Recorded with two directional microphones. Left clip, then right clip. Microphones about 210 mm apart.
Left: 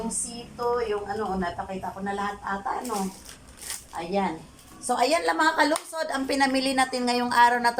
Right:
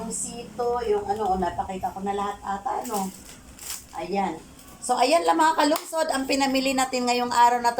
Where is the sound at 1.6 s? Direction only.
15° right (ahead or behind).